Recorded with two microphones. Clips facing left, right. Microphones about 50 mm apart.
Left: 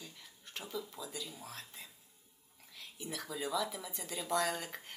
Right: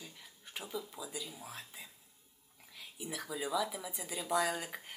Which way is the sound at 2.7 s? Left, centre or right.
Centre.